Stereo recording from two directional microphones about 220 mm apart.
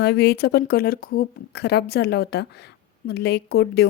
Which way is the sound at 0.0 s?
45° left (ahead or behind).